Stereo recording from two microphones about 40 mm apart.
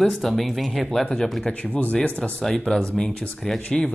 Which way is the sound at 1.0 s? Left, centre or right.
Centre.